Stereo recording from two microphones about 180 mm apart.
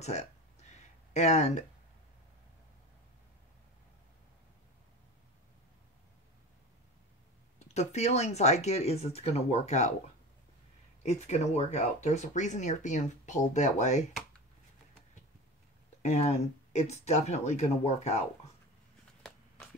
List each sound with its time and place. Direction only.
0.0 s a sound: 40° left (ahead or behind)
7.5 s speech: 40° left (ahead or behind)
11.0 s speech: 40° left (ahead or behind)
16.0 s speech: 40° left (ahead or behind)